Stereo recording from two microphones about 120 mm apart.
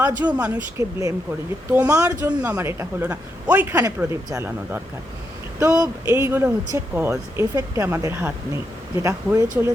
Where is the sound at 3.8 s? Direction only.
25° right (ahead or behind).